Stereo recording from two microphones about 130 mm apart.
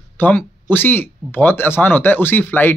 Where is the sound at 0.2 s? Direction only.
15° left (ahead or behind).